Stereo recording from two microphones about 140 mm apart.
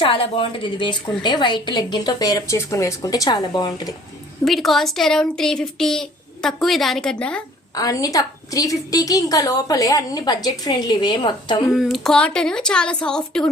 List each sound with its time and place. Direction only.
0.0 s a woman's voice: 40° left (ahead or behind)
4.4 s speech: centre (ahead or behind)
7.8 s a woman's voice: 25° left (ahead or behind)
11.7 s speech: centre (ahead or behind)